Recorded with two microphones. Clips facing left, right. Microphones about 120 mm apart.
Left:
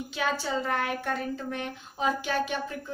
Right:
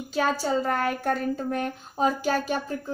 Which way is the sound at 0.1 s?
40° right (ahead or behind).